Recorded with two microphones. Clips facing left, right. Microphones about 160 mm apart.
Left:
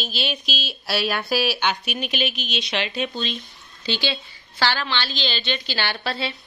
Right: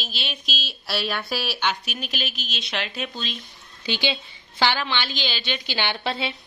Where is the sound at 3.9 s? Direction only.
15° right (ahead or behind).